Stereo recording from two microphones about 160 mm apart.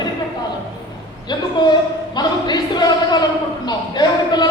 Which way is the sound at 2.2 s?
25° left (ahead or behind).